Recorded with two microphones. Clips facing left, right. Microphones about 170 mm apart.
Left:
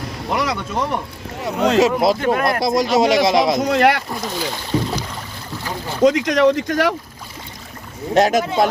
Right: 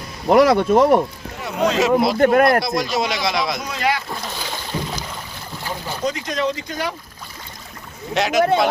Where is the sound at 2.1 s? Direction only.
50° right (ahead or behind).